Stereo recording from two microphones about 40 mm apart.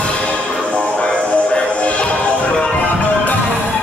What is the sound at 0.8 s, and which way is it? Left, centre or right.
Music, left.